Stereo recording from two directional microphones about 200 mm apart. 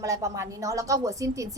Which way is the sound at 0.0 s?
15° right (ahead or behind).